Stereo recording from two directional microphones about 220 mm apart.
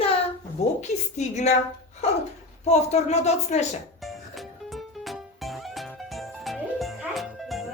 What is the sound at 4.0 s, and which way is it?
Music, centre (ahead or behind).